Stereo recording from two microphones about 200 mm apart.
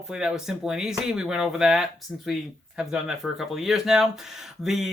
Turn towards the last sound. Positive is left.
turn(degrees=0)  # may be behind; listen again after turning